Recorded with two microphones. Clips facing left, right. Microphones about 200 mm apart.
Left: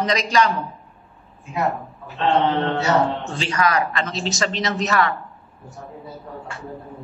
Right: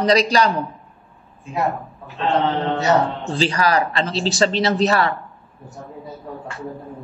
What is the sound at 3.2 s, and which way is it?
A man's voice, 35° right (ahead or behind).